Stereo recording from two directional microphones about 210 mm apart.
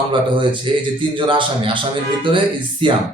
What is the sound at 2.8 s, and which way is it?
Speech, 25° right (ahead or behind).